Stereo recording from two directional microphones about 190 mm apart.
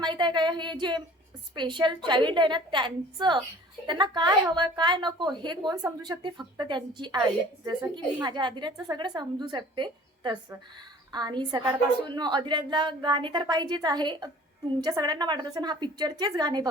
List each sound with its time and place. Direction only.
0.0 s a woman's voice: 25° right (ahead or behind)